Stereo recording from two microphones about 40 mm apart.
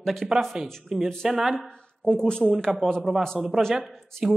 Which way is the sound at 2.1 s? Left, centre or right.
Centre.